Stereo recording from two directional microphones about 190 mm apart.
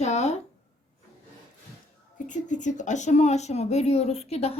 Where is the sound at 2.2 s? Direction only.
40° left (ahead or behind).